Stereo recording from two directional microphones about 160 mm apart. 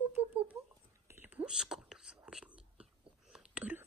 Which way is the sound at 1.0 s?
10° right (ahead or behind).